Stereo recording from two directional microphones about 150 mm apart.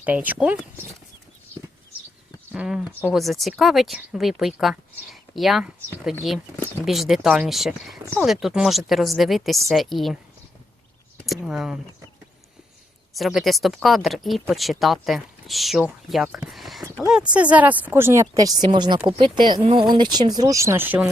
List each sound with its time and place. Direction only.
0.0 s speech: 10° right (ahead or behind)
2.5 s speech: 5° right (ahead or behind)
11.4 s speech: 5° right (ahead or behind)
13.1 s speech: centre (ahead or behind)